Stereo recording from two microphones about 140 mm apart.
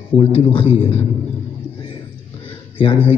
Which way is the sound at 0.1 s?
40° left (ahead or behind).